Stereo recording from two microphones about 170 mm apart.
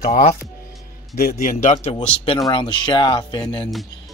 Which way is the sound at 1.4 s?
50° left (ahead or behind).